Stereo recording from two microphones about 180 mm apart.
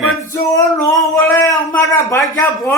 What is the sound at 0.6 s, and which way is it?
Music, 20° left (ahead or behind).